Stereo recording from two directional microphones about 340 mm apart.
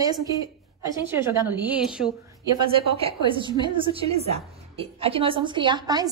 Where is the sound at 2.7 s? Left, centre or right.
Centre.